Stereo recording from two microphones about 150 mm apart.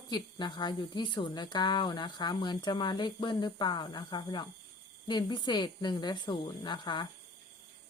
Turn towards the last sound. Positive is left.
turn(degrees=30)  # may be behind; listen again after turning